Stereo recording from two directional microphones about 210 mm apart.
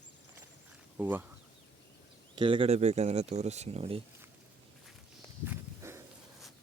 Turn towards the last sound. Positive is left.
turn(degrees=-10)  # may be behind; listen again after turning